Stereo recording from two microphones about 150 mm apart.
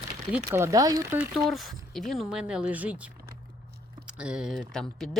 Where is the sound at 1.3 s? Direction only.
Centre (ahead or behind).